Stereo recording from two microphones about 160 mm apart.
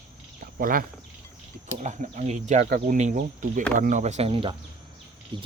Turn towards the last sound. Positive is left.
turn(degrees=-30)  # may be behind; listen again after turning